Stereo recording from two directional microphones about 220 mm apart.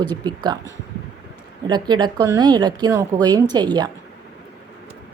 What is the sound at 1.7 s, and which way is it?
A woman's voice, 20° right (ahead or behind).